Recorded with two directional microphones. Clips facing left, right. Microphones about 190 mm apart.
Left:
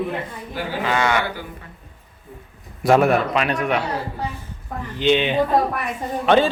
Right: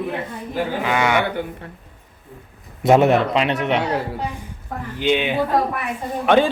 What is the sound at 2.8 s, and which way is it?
A man's voice, 25° right (ahead or behind).